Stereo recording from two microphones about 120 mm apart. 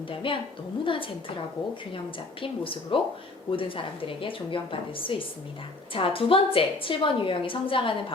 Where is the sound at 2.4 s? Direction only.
45° left (ahead or behind).